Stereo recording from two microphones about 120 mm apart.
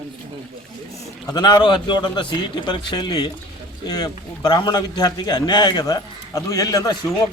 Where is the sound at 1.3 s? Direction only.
35° left (ahead or behind).